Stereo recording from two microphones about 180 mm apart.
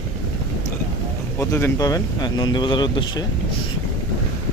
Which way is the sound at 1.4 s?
15° left (ahead or behind).